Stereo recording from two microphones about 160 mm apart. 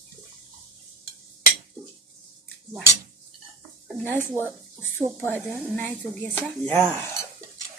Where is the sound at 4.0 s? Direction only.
15° left (ahead or behind).